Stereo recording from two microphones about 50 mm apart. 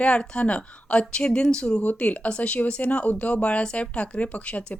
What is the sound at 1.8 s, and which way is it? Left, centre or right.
Speech, left.